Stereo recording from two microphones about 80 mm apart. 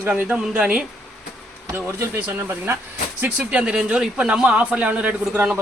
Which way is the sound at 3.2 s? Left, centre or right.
Centre.